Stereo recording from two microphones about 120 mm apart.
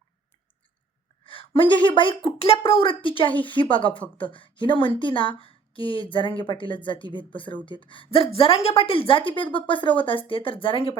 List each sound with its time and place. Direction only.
1.2 s a woman's voice: 45° left (ahead or behind)